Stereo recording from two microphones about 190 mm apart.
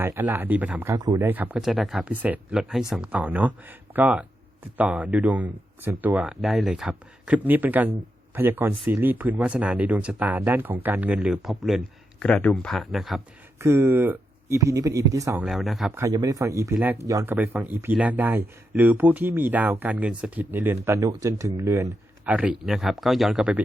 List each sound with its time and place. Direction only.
0.0 s speech: 10° right (ahead or behind)
13.6 s speech: 15° right (ahead or behind)
15.4 s speech: centre (ahead or behind)
16.0 s speech: 15° right (ahead or behind)